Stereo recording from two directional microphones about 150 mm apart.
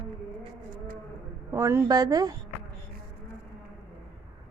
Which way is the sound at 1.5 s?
15° right (ahead or behind).